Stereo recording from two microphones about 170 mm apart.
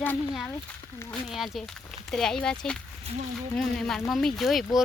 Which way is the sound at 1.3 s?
Centre (ahead or behind).